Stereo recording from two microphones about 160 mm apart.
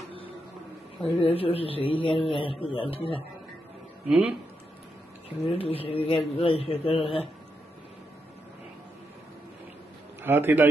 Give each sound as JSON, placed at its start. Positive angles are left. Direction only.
{"t": 1.2, "sound": "a man's voice", "side_deg": 35}
{"t": 4.1, "sound": "a man's voice", "side_deg": -5}
{"t": 5.4, "sound": "a man's voice", "side_deg": 40}
{"t": 10.2, "sound": "a man's voice", "side_deg": -15}